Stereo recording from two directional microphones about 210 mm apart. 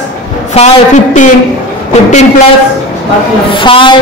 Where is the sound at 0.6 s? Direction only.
25° left (ahead or behind).